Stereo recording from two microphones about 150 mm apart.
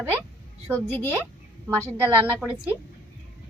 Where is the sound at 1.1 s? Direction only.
15° right (ahead or behind).